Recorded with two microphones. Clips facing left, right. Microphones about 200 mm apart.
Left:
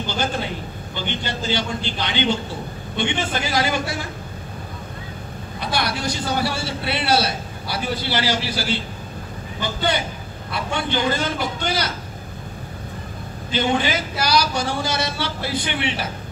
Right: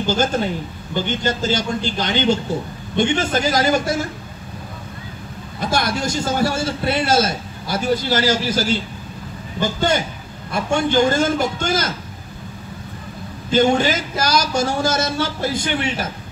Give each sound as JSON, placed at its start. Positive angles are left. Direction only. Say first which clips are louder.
{"t": 0.0, "sound": "a man's voice", "louder": "right 6 dB", "side_deg": -45}
{"t": 5.6, "sound": "a man's voice", "louder": "right 4 dB", "side_deg": -45}
{"t": 13.5, "sound": "a man's voice", "louder": "right 5 dB", "side_deg": -45}